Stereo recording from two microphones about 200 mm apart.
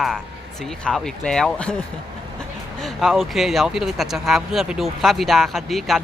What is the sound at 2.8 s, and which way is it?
Speech, centre (ahead or behind).